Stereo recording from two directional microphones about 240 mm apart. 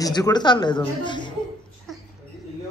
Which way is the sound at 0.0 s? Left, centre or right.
Centre.